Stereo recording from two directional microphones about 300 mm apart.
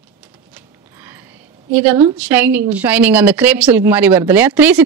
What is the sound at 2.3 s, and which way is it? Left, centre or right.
A woman's voice, centre.